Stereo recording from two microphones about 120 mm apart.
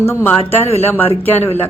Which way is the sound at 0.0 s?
20° left (ahead or behind).